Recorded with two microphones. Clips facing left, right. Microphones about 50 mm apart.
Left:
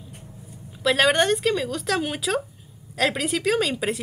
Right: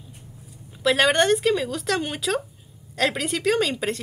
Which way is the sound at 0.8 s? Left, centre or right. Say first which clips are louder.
Right 1 dB; centre.